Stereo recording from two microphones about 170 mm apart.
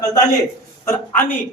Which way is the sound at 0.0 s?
20° left (ahead or behind).